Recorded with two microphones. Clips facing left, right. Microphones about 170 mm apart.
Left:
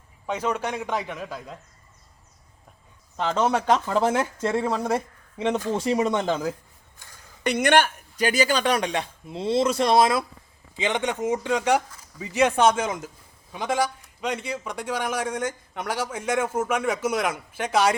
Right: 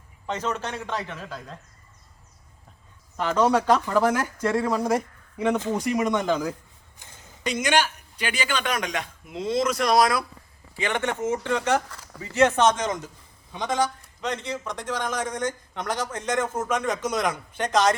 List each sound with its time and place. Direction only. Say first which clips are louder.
0.3 s a man's voice: left 2 dB; 10° left (ahead or behind)
3.2 s speech: right 2 dB; 25° left (ahead or behind)
7.0 s a sound: right 1 dB; 20° right (ahead or behind)
7.4 s a man's voice: left 4 dB; 60° left (ahead or behind); by 11.8 s 15° left (ahead or behind)
11.9 s a sound: right 5 dB; 75° right (ahead or behind)
12.2 s a man's voice: even; 15° left (ahead or behind)